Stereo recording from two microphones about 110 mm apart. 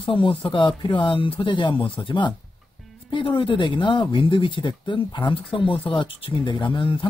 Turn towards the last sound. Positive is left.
turn(degrees=50)  # may be behind; listen again after turning